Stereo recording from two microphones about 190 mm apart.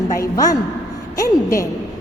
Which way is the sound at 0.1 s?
15° left (ahead or behind).